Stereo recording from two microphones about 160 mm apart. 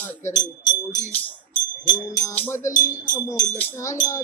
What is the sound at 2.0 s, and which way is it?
Speech, 20° left (ahead or behind).